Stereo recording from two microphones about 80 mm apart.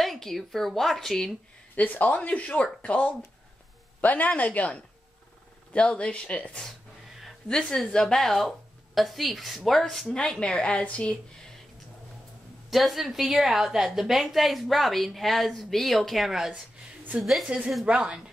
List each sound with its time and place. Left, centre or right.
0.0 s a woman's voice: centre
1.8 s speech: centre
12.6 s a woman's voice: centre
17.8 s speech: centre